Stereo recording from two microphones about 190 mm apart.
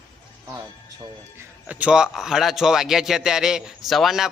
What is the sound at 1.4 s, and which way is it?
A man's voice, 5° right (ahead or behind).